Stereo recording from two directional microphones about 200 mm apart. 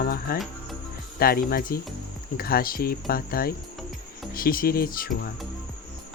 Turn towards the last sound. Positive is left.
turn(degrees=50)  # may be behind; listen again after turning